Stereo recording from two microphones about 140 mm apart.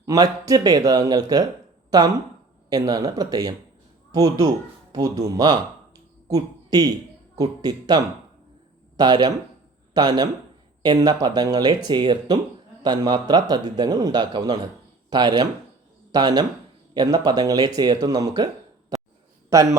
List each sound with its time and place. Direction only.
0.0 s a man's voice: 25° right (ahead or behind)